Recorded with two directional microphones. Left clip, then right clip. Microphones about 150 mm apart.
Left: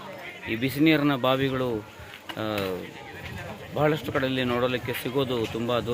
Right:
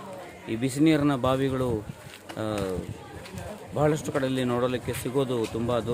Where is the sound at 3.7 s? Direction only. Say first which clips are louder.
Left 1 dB; 15° right (ahead or behind).